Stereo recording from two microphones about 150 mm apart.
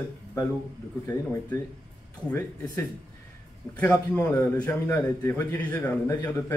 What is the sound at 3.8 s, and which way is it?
A man's voice, 10° left (ahead or behind).